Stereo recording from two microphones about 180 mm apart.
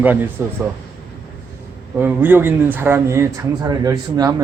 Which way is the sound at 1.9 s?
10° right (ahead or behind).